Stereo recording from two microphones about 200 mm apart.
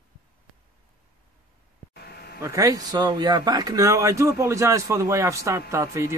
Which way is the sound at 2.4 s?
15° right (ahead or behind).